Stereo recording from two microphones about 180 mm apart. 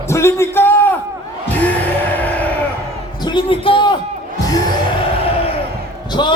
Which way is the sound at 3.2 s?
25° left (ahead or behind).